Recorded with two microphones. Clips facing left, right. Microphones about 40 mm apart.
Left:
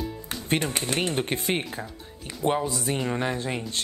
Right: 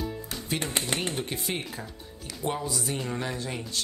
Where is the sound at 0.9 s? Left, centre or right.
Left.